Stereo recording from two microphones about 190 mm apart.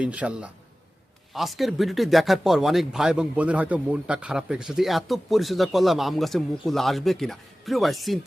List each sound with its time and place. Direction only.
0.0 s a man's voice: 5° right (ahead or behind)